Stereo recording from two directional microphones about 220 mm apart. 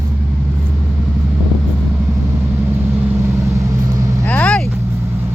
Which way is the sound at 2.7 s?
10° right (ahead or behind).